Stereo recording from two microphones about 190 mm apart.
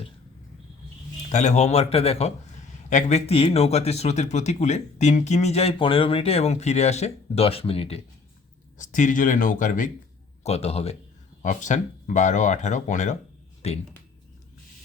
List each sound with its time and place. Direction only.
1.3 s a man's voice: 40° left (ahead or behind)